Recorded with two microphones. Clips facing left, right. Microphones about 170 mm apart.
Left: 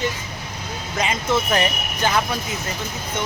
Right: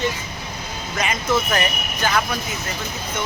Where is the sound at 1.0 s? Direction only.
25° left (ahead or behind).